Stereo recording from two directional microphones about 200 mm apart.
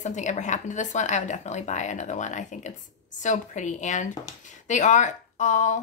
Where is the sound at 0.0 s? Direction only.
35° left (ahead or behind).